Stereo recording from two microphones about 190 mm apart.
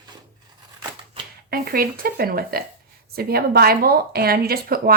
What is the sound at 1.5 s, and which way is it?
Speech, 50° right (ahead or behind).